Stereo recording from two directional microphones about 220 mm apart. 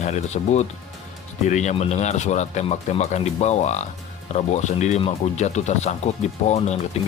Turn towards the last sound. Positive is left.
turn(degrees=30)  # may be behind; listen again after turning